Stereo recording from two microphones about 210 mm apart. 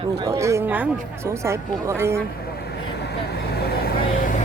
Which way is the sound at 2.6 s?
50° left (ahead or behind).